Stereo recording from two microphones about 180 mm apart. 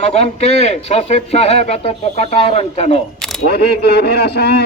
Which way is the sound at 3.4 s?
65° left (ahead or behind).